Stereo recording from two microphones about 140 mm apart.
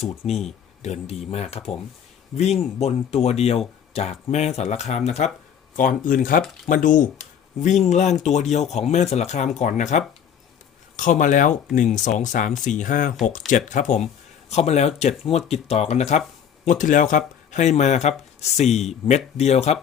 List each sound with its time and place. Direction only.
0.0 s speech: 45° left (ahead or behind)
5.7 s speech: 75° left (ahead or behind); by 16.2 s 55° left (ahead or behind)
16.6 s speech: 65° left (ahead or behind); by 19.8 s 50° left (ahead or behind)